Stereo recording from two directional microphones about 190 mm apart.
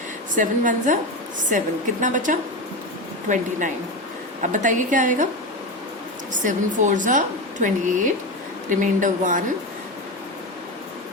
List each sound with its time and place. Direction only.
0.3 s a woman's voice: 40° right (ahead or behind)
4.5 s a woman's voice: 40° right (ahead or behind)
6.4 s a woman's voice: 40° right (ahead or behind)